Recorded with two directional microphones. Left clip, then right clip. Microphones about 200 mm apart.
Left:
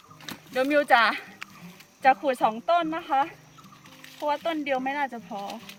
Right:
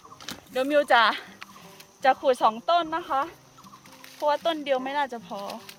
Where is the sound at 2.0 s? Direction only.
30° right (ahead or behind).